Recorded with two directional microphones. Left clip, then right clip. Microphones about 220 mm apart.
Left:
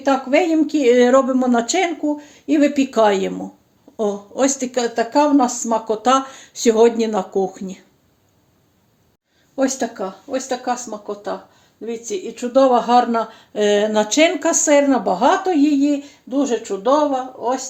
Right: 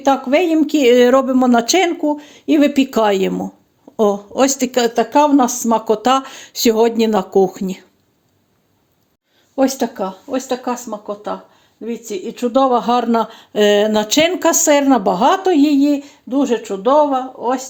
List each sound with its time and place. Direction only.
0.0 s speech: 45° right (ahead or behind)
9.6 s speech: 35° right (ahead or behind)